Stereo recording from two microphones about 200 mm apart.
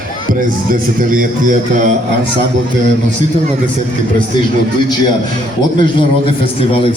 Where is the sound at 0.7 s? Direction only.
45° right (ahead or behind).